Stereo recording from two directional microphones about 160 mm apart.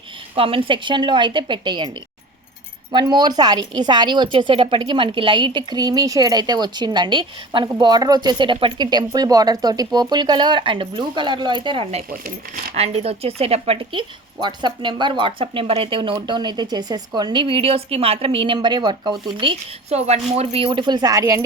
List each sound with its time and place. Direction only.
0.3 s a woman's voice: 35° right (ahead or behind)